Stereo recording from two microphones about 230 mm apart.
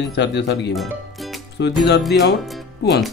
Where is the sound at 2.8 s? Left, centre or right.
Left.